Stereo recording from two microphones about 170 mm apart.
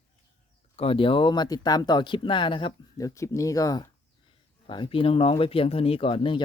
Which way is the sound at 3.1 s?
20° left (ahead or behind).